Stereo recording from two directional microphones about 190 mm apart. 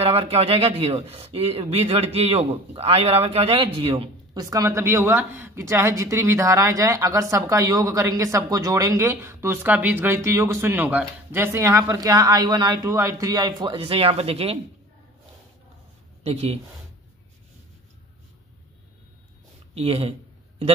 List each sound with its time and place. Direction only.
0.0 s speech: 30° right (ahead or behind)
16.3 s speech: 35° right (ahead or behind)
19.7 s a sound: 30° right (ahead or behind)